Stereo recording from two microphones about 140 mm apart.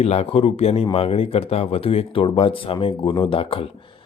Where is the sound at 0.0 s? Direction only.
50° left (ahead or behind).